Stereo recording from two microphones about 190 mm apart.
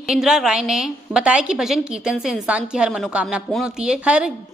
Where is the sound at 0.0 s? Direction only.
5° right (ahead or behind).